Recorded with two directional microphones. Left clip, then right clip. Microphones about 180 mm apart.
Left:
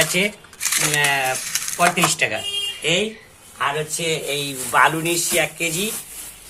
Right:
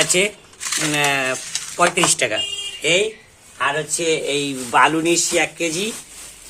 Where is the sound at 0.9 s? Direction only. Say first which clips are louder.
Right 1 dB; 65° right (ahead or behind).